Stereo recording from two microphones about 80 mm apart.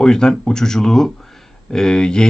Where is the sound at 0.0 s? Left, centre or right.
Centre.